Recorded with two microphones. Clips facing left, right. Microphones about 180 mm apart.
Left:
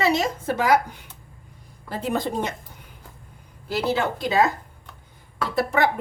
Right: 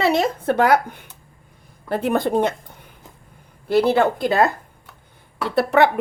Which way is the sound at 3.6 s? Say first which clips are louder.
Right 7 dB; 60° right (ahead or behind).